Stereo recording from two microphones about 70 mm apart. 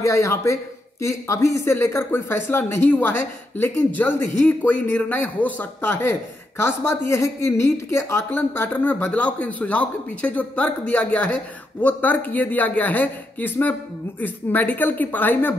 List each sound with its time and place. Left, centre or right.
0.0 s speech: left
6.6 s speech: left
8.3 s speech: left